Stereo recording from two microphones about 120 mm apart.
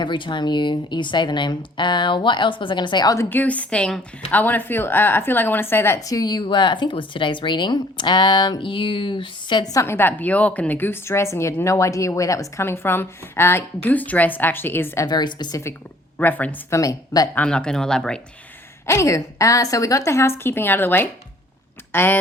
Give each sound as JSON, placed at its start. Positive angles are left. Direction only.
{"t": 0.0, "sound": "speech", "side_deg": 40}
{"t": 3.2, "sound": "a woman's voice", "side_deg": 15}
{"t": 6.1, "sound": "speech", "side_deg": 35}
{"t": 9.8, "sound": "a woman's voice", "side_deg": 20}
{"t": 15.0, "sound": "speech", "side_deg": 35}
{"t": 16.1, "sound": "a woman's voice", "side_deg": 15}
{"t": 16.7, "sound": "a woman's voice", "side_deg": 30}
{"t": 17.3, "sound": "speech", "side_deg": 10}
{"t": 18.9, "sound": "a woman's voice", "side_deg": 25}